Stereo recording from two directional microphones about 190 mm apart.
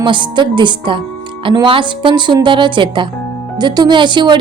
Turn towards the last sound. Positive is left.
turn(degrees=-25)  # may be behind; listen again after turning